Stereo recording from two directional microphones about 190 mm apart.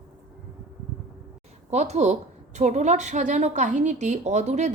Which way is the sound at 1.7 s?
35° right (ahead or behind).